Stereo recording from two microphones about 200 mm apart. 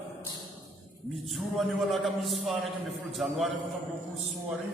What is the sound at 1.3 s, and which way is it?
A man's voice, centre (ahead or behind).